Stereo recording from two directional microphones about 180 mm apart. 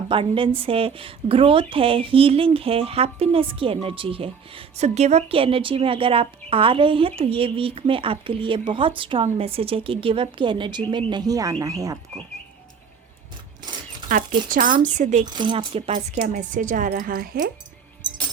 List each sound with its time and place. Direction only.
0.1 s a woman's voice: 30° right (ahead or behind)
14.1 s a woman's voice: 50° right (ahead or behind)
15.2 s speech: 25° right (ahead or behind)
16.1 s a woman's voice: 45° right (ahead or behind)